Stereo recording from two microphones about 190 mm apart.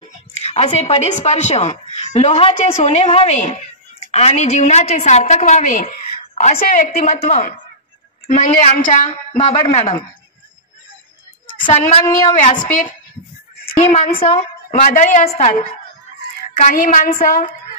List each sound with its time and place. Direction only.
0.4 s a woman's voice: 35° left (ahead or behind)
9.3 s a woman's voice: 30° left (ahead or behind)
11.6 s a woman's voice: 25° left (ahead or behind)
14.2 s a woman's voice: 35° left (ahead or behind)